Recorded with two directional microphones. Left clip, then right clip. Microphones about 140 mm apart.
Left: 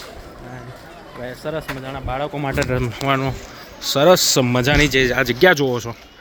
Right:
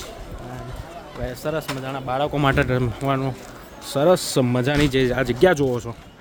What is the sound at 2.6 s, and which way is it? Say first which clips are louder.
Speech: left 1 dB; 15° right (ahead or behind).